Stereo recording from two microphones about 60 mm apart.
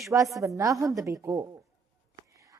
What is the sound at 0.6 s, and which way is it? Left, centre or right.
Speech, right.